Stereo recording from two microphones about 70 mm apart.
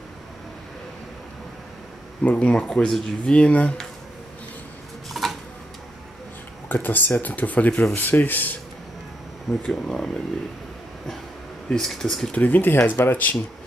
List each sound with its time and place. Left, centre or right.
2.3 s speech: centre
5.2 s a sound: centre
6.7 s speech: left
9.7 s speech: centre
11.7 s speech: centre
12.4 s speech: left